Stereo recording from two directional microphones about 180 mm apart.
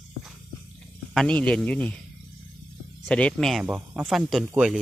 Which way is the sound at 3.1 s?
5° left (ahead or behind).